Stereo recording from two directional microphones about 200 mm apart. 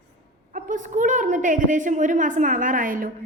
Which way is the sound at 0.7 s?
40° right (ahead or behind).